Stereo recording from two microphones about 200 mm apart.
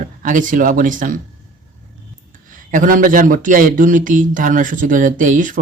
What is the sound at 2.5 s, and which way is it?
A man's voice, 40° right (ahead or behind).